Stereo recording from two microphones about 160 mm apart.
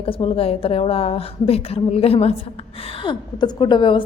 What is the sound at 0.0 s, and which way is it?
A woman's voice, 35° left (ahead or behind).